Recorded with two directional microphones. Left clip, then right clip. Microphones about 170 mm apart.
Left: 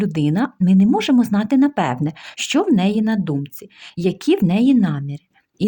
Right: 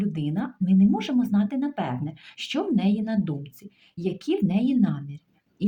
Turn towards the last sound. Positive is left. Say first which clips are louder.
# left 8 dB
turn(degrees=55)  # may be behind; listen again after turning